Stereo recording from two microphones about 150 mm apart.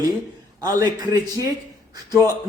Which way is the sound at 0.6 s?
25° right (ahead or behind).